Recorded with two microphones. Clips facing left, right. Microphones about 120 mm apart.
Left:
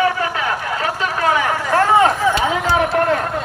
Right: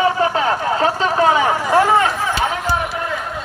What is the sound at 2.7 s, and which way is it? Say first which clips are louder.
Run: left 6 dB; 65° left (ahead or behind).